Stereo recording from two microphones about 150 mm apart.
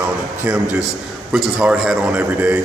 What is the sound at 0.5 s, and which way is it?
A man's voice, 10° right (ahead or behind).